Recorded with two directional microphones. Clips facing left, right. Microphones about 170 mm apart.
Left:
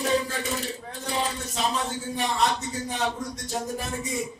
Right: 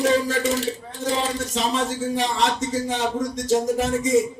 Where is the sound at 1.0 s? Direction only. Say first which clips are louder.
Right 6 dB; 90° right.